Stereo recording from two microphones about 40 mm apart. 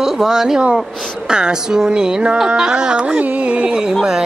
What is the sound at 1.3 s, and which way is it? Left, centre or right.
Speech, right.